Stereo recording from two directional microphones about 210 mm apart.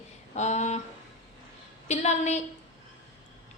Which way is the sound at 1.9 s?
30° left (ahead or behind).